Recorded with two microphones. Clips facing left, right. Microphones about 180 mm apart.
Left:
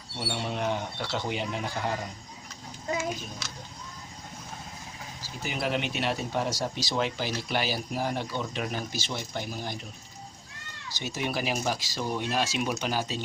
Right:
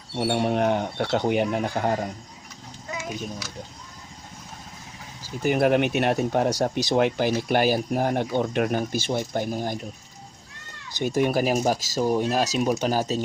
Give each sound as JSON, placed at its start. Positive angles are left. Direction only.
{"t": 0.2, "sound": "speech", "side_deg": -55}
{"t": 5.4, "sound": "speech", "side_deg": -55}
{"t": 11.0, "sound": "speech", "side_deg": -50}